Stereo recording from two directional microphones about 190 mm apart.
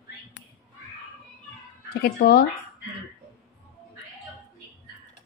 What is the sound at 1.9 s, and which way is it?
Speech, 55° left (ahead or behind).